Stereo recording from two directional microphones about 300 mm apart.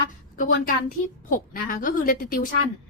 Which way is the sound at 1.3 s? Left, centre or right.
Left.